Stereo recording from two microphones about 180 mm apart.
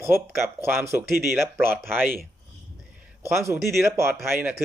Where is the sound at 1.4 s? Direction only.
10° right (ahead or behind).